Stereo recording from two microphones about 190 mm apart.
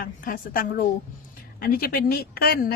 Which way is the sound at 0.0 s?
45° left (ahead or behind).